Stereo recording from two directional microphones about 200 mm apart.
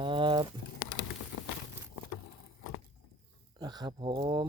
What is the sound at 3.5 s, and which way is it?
Speech, 20° right (ahead or behind).